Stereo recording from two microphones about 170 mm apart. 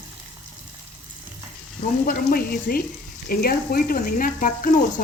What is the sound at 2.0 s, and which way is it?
Speech, 60° left (ahead or behind).